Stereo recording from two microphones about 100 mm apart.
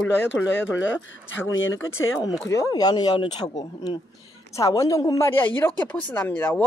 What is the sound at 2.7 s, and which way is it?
A woman's voice, 45° left (ahead or behind).